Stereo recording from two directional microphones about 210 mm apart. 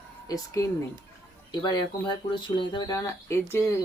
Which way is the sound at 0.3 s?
15° left (ahead or behind).